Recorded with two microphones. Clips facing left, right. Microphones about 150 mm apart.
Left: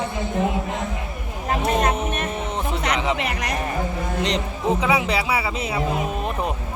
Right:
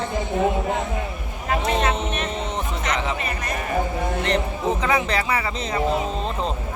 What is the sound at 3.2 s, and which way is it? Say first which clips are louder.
Speech: left 2 dB; 70° left (ahead or behind).